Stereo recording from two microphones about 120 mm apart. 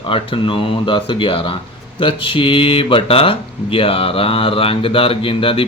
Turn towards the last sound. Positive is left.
turn(degrees=50)  # may be behind; listen again after turning